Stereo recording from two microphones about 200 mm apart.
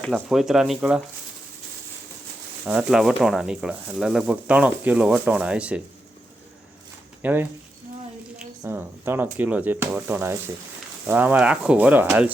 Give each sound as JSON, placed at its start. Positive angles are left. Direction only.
{"t": 0.0, "sound": "speech", "side_deg": 0}
{"t": 2.6, "sound": "speech", "side_deg": -5}
{"t": 7.2, "sound": "speech", "side_deg": -10}